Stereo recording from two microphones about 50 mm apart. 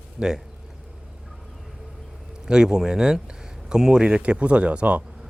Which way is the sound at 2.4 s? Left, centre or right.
Centre.